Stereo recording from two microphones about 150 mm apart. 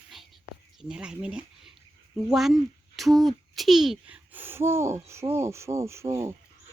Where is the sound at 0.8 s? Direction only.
5° right (ahead or behind).